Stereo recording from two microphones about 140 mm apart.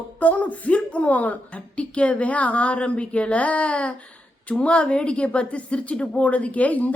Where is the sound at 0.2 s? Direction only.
10° left (ahead or behind).